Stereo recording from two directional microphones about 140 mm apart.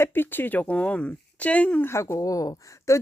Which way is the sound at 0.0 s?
15° left (ahead or behind).